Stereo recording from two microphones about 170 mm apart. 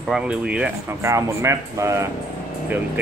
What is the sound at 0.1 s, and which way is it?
Speech, 5° right (ahead or behind).